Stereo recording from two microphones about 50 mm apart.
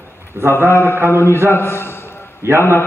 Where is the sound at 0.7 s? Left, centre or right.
Left.